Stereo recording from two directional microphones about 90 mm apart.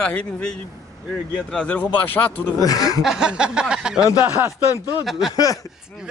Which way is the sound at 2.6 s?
45° left (ahead or behind).